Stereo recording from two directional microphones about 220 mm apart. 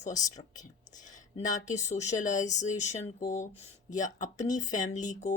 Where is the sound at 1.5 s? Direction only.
30° left (ahead or behind).